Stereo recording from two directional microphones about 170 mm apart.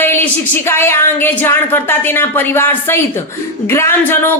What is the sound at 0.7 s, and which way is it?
Speech, 15° left (ahead or behind).